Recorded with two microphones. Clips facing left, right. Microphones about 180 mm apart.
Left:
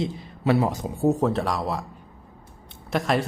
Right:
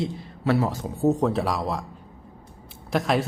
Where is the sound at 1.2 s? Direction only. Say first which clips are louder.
Even; centre (ahead or behind).